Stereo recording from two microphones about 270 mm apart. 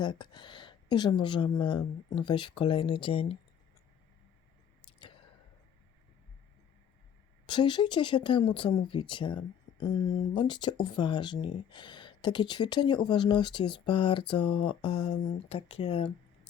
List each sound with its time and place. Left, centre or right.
0.0 s speech: centre
7.4 s speech: centre